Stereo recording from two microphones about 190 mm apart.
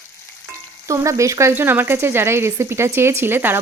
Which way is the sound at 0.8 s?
15° right (ahead or behind).